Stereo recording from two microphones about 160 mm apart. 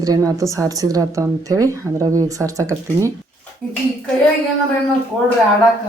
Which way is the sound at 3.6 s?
5° left (ahead or behind).